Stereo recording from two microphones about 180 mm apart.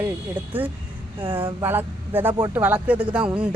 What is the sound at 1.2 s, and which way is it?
Speech, 30° right (ahead or behind).